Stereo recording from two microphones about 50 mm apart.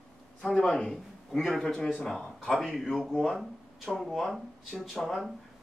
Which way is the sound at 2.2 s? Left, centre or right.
Centre.